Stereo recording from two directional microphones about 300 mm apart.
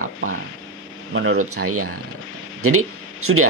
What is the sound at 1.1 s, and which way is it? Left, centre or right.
Speech, right.